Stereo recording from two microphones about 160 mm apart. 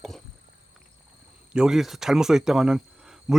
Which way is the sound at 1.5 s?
5° right (ahead or behind).